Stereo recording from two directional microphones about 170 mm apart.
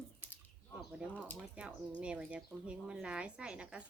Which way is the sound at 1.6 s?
5° right (ahead or behind).